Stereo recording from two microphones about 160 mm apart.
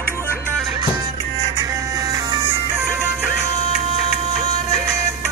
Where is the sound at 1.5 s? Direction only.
25° right (ahead or behind).